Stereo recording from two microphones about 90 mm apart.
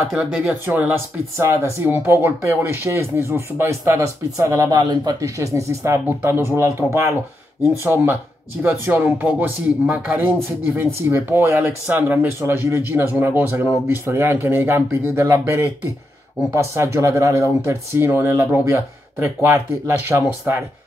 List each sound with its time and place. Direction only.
0.1 s speech: 10° right (ahead or behind)
1.3 s speech: 35° right (ahead or behind)